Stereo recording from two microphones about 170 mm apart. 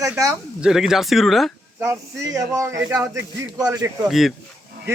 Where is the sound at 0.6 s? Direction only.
5° right (ahead or behind).